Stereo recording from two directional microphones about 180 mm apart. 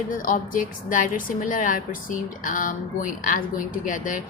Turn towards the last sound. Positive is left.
turn(degrees=45)  # may be behind; listen again after turning